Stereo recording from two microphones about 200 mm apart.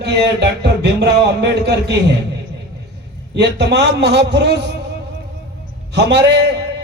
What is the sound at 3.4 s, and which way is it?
A man's voice, 60° right (ahead or behind).